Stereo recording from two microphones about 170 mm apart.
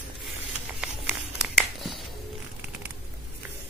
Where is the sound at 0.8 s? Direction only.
5° right (ahead or behind).